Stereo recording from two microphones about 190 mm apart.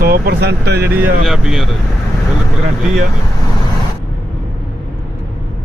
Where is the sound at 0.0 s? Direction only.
55° right (ahead or behind).